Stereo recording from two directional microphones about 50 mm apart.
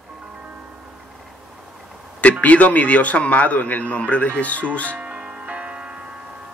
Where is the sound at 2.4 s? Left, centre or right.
Left.